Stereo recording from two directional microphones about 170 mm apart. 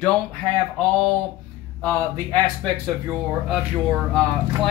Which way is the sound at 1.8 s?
10° left (ahead or behind).